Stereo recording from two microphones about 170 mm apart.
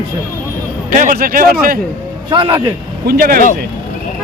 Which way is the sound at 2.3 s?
25° right (ahead or behind).